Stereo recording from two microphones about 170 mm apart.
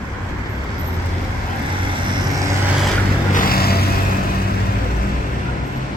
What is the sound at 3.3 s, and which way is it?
Vehicle, 60° left (ahead or behind).